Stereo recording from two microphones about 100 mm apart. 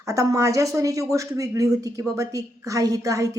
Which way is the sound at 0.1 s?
35° right (ahead or behind).